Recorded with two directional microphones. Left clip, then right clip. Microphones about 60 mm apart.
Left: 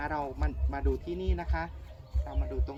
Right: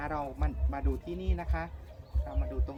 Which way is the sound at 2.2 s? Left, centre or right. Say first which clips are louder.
Even; centre.